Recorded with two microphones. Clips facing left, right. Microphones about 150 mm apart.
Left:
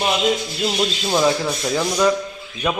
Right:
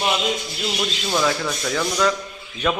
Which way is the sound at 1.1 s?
25° left (ahead or behind).